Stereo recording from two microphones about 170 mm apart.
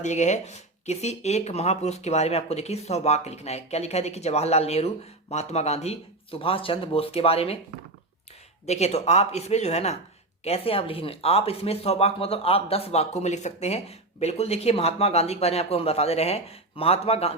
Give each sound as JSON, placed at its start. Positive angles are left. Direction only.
{"t": 0.0, "sound": "speech", "side_deg": 45}
{"t": 8.6, "sound": "speech", "side_deg": 40}